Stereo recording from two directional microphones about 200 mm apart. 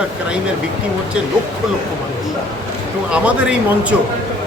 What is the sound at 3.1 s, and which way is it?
Speech, 5° right (ahead or behind).